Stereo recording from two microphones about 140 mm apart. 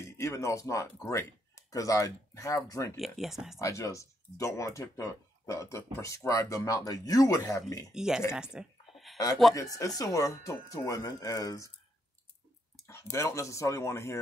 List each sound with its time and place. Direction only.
0.2 s speech: 20° left (ahead or behind)
3.0 s speech: centre (ahead or behind)
3.6 s speech: 20° left (ahead or behind)
7.9 s speech: 5° right (ahead or behind)
8.3 s a sound: 5° right (ahead or behind)
9.6 s speech: 25° left (ahead or behind)
12.8 s speech: 20° left (ahead or behind)